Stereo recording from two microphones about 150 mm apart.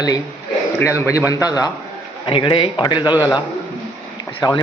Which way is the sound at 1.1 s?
20° left (ahead or behind).